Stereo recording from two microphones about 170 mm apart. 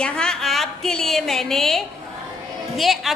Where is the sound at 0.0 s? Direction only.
5° left (ahead or behind).